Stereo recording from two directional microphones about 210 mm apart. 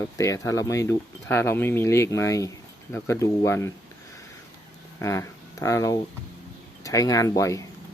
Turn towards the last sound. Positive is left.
turn(degrees=15)  # may be behind; listen again after turning